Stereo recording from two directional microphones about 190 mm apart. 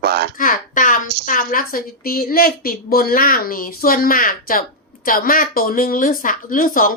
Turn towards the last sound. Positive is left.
turn(degrees=45)  # may be behind; listen again after turning